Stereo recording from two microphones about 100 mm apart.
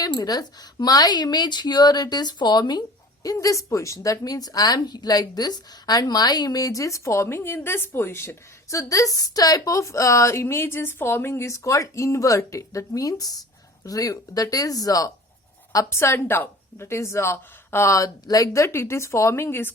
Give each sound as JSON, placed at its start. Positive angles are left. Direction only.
{"t": 0.0, "sound": "speech", "side_deg": 40}
{"t": 3.2, "sound": "a woman's voice", "side_deg": 35}